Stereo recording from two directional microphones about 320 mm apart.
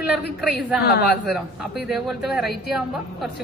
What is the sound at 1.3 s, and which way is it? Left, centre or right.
Speech, centre.